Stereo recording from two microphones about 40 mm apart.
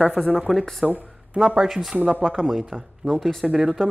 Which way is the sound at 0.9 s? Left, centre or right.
Right.